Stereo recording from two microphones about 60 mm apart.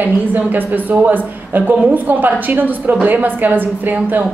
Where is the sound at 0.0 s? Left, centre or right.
Right.